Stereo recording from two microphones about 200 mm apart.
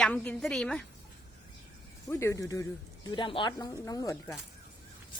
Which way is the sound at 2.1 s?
15° left (ahead or behind).